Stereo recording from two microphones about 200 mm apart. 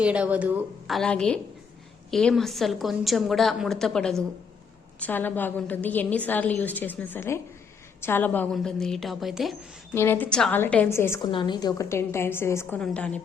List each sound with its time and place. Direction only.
0.0 s a woman's voice: 5° right (ahead or behind)
9.9 s a woman's voice: 10° left (ahead or behind)
11.3 s a woman's voice: 25° left (ahead or behind); by 13.2 s 5° left (ahead or behind)